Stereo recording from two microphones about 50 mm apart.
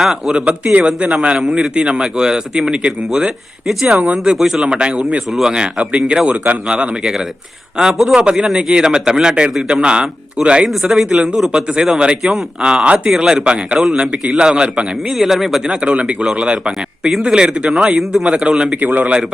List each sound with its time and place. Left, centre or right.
0.0 s a man's voice: centre
0.3 s a man's voice: right; by 3.9 s centre
3.9 s a man's voice: right
4.2 s a man's voice: centre
4.6 s a man's voice: centre
6.7 s a man's voice: centre
10.7 s a man's voice: centre
13.1 s a man's voice: centre
15.0 s a man's voice: centre
18.8 s a man's voice: right